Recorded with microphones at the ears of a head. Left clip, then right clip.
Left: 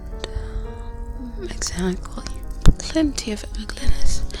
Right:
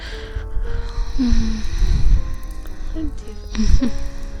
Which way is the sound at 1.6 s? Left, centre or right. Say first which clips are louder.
Left 7 dB; left.